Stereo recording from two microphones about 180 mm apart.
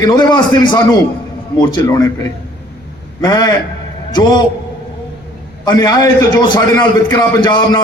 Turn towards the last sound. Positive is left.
turn(degrees=25)  # may be behind; listen again after turning